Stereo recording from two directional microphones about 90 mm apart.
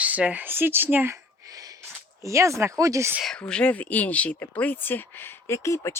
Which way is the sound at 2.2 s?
35° right (ahead or behind).